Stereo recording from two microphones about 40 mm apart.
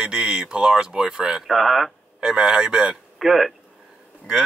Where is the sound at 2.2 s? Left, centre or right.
Centre.